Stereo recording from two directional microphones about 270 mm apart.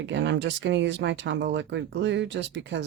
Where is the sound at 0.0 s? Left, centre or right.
Right.